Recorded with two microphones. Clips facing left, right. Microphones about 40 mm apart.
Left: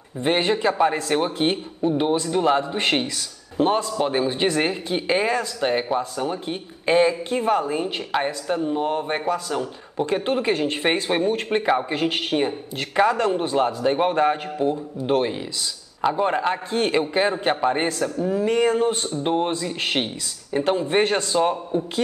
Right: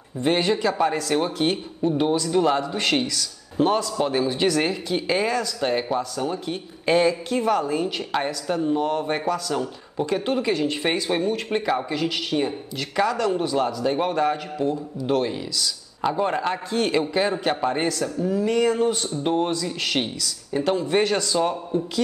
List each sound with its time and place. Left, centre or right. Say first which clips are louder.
0.2 s speech: left 1 dB; left
8.1 s speech: left 2 dB; centre
10.0 s speech: left 1 dB; left
16.7 s speech: even; left